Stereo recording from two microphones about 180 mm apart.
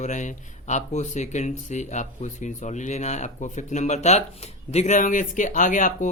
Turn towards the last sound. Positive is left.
turn(degrees=45)  # may be behind; listen again after turning